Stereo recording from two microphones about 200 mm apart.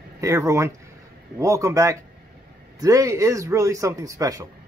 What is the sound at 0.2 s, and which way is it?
Speech, 15° right (ahead or behind).